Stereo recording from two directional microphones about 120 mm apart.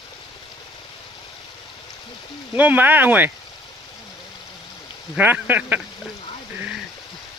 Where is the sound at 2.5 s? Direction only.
15° right (ahead or behind).